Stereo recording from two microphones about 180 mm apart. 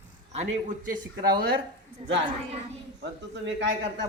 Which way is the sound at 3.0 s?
80° right.